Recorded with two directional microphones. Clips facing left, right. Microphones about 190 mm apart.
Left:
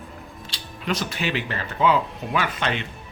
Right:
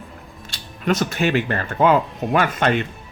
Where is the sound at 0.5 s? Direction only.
45° right (ahead or behind).